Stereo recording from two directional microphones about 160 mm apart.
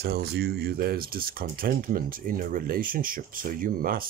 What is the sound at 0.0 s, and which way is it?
Speech, 85° right.